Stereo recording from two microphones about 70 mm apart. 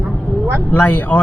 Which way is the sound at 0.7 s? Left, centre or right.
Left.